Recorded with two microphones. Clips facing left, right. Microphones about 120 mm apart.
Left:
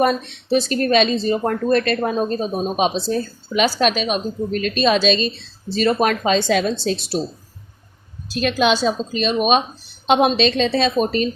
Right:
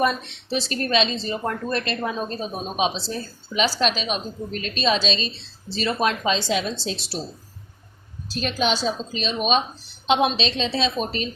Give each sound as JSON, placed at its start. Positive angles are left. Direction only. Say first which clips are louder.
{"t": 0.0, "sound": "speech", "louder": "left 5 dB", "side_deg": 45}
{"t": 8.3, "sound": "a woman's voice", "louder": "left 6 dB", "side_deg": 65}